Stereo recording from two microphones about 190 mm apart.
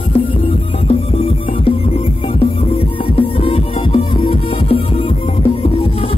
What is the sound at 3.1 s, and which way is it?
Music, 30° left (ahead or behind).